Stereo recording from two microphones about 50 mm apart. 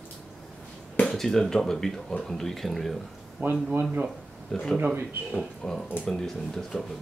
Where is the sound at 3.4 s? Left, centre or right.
Right.